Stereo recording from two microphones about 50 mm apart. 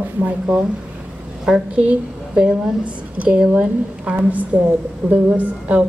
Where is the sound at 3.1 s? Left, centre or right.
Right.